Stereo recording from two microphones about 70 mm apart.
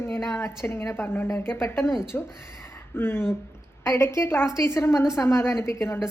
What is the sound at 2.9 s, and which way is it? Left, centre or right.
A woman's voice, left.